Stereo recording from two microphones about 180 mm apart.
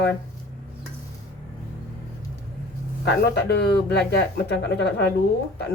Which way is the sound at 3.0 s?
70° left (ahead or behind).